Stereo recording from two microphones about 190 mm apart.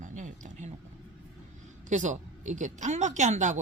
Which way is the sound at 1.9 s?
40° right (ahead or behind).